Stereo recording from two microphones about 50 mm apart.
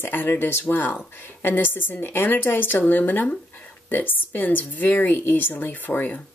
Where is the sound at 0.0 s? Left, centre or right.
Left.